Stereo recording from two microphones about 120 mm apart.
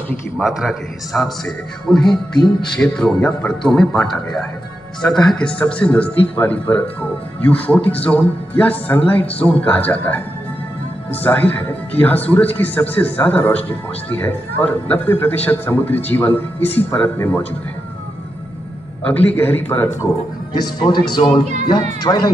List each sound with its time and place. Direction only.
0.4 s a man's voice: 5° right (ahead or behind); by 17.4 s 15° left (ahead or behind)
19.0 s speech: 15° left (ahead or behind)
20.5 s speech: 35° left (ahead or behind)